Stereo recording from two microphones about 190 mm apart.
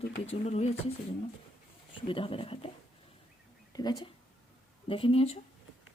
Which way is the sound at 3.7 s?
20° left (ahead or behind).